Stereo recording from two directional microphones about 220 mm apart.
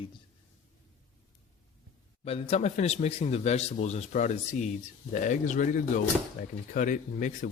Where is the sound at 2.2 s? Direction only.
25° left (ahead or behind).